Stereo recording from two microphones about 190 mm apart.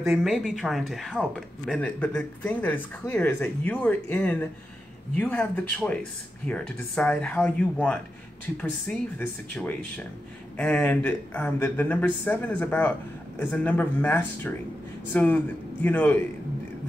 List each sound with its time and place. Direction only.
0.1 s speech: centre (ahead or behind)